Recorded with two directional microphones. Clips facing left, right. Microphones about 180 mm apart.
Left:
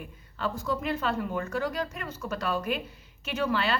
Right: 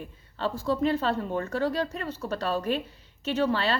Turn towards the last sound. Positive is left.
turn(degrees=-35)  # may be behind; listen again after turning